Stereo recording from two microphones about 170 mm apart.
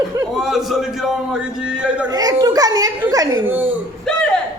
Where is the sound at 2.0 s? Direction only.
20° right (ahead or behind).